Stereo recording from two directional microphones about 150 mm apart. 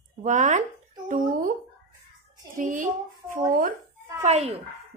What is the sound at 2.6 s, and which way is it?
Speech, 60° right (ahead or behind).